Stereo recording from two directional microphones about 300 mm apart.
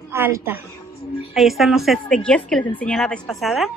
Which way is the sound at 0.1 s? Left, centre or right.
Centre.